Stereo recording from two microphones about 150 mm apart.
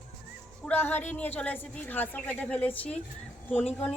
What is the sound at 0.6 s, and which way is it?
A woman's voice, 15° left (ahead or behind).